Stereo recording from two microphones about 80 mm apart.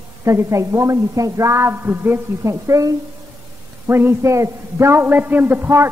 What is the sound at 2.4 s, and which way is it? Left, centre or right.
A man's voice, right.